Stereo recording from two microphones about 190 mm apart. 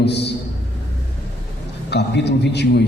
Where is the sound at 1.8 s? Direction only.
65° left (ahead or behind).